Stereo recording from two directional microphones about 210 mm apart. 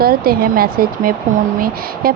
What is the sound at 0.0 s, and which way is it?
Speech, 45° right (ahead or behind).